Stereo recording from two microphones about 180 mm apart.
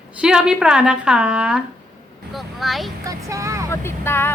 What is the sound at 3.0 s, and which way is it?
Speech, 15° right (ahead or behind).